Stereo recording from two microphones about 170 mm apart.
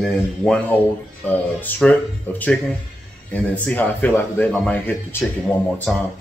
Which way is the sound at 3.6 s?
10° left (ahead or behind).